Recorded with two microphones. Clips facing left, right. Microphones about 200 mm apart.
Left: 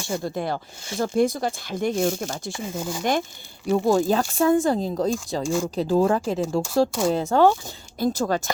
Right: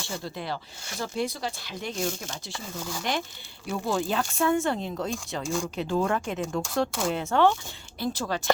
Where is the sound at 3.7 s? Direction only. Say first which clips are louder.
Left 8 dB; 40° left (ahead or behind).